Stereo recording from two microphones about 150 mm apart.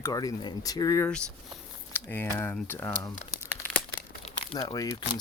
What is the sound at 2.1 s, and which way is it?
Speech, 15° left (ahead or behind).